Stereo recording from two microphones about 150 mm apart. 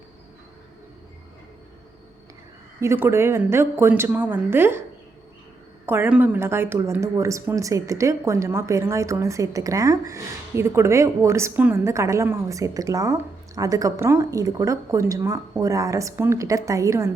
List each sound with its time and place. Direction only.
2.8 s speech: 15° right (ahead or behind)
5.8 s speech: 15° right (ahead or behind)